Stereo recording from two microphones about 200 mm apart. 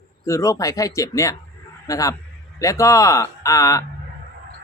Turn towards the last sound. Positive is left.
turn(degrees=15)  # may be behind; listen again after turning